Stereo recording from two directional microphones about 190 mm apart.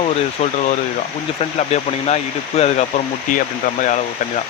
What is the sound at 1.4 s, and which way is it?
Speech, 35° left (ahead or behind).